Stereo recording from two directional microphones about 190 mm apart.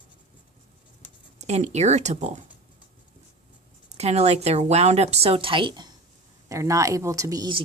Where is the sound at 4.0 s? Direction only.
35° right (ahead or behind).